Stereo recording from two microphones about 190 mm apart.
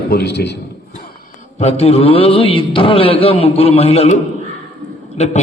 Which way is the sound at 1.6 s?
30° left (ahead or behind).